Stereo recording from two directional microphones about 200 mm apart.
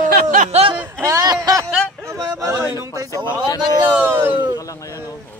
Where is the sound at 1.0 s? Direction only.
15° right (ahead or behind).